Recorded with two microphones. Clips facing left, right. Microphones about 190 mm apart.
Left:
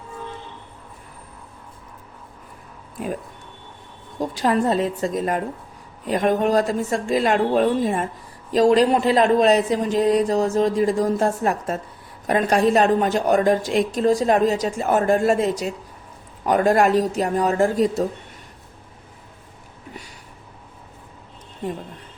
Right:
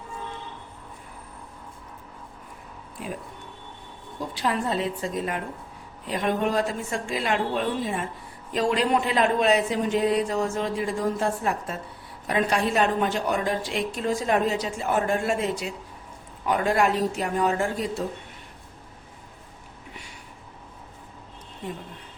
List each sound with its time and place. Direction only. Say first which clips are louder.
3.0 s a woman's voice: left 7 dB; 45° left (ahead or behind)
4.2 s a woman's voice: left 7 dB; 45° left (ahead or behind)